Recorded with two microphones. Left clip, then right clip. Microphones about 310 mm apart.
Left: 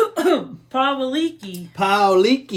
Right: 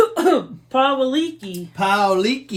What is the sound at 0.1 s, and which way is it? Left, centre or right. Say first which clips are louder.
Throat clearing: right 2 dB; centre.